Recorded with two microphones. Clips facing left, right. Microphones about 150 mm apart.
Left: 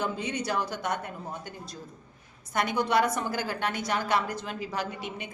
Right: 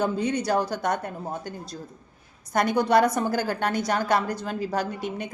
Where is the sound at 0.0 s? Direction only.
35° right (ahead or behind).